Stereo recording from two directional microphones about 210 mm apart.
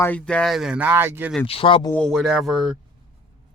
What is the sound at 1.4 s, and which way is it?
Speech, 25° left (ahead or behind).